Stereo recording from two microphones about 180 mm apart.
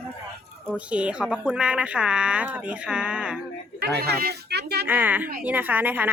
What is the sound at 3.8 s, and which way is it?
Speech, 65° right (ahead or behind).